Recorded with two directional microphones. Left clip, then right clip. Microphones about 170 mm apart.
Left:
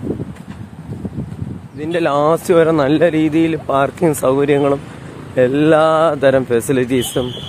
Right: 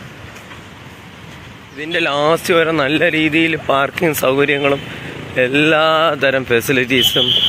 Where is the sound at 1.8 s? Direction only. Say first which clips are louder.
Left 1 dB; 20° left (ahead or behind).